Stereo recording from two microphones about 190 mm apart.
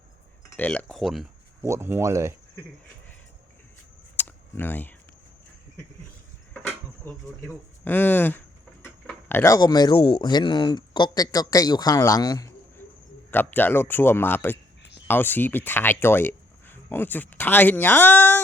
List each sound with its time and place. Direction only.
0.5 s speech: 10° left (ahead or behind)
1.6 s speech: 15° right (ahead or behind)
4.2 s camera: 10° left (ahead or behind)
7.0 s speech: 10° left (ahead or behind)